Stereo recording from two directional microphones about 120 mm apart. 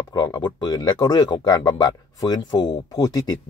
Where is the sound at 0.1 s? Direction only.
35° left (ahead or behind).